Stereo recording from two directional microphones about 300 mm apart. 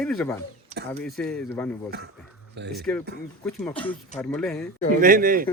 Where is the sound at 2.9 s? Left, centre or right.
Centre.